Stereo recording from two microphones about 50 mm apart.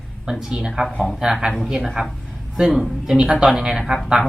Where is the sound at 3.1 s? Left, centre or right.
Right.